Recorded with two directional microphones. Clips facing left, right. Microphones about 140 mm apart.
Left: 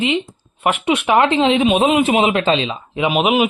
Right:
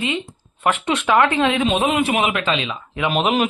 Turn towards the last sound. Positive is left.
turn(degrees=10)  # may be behind; listen again after turning